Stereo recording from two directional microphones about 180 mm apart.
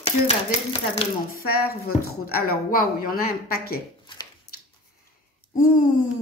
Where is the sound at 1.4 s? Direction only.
60° left (ahead or behind).